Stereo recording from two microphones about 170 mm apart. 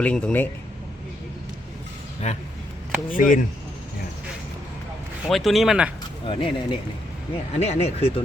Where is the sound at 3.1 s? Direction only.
55° left (ahead or behind).